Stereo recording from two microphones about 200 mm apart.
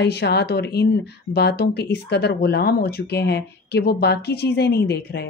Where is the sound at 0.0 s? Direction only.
55° left (ahead or behind).